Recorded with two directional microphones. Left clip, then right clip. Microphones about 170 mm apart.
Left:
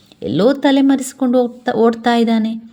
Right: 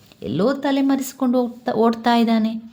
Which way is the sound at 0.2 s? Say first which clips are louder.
Left 7 dB; 25° left (ahead or behind).